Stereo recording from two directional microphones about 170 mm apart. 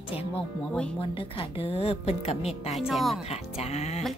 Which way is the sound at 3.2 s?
40° left (ahead or behind).